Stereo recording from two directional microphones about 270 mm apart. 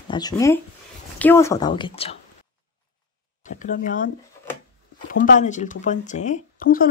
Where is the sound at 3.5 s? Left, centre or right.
Left.